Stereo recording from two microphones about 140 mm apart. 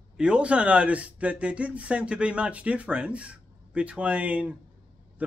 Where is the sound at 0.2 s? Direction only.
10° right (ahead or behind).